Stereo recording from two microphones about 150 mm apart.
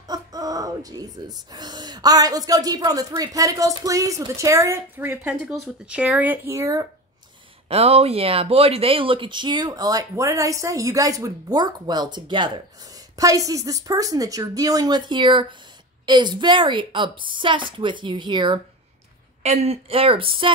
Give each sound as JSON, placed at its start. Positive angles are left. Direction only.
{"t": 0.0, "sound": "speech", "side_deg": -25}
{"t": 5.3, "sound": "speech", "side_deg": -5}
{"t": 7.6, "sound": "a woman's voice", "side_deg": -45}
{"t": 19.4, "sound": "a woman's voice", "side_deg": -45}